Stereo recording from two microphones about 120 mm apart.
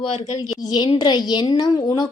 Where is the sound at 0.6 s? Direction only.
35° left (ahead or behind).